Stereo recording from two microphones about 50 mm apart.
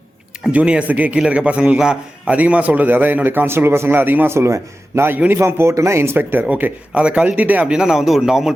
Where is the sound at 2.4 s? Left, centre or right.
Right.